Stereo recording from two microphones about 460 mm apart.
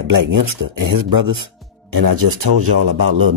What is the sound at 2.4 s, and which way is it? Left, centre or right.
Speech, right.